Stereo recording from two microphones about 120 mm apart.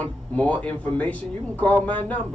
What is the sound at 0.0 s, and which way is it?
Speech, 10° left (ahead or behind).